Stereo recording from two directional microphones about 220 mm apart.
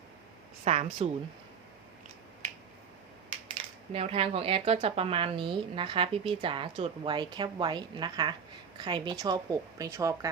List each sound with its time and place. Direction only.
0.6 s speech: 30° right (ahead or behind)
3.9 s a woman's voice: 25° right (ahead or behind)